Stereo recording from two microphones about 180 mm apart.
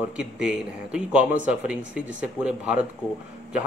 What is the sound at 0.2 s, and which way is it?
A man's voice, 5° right (ahead or behind).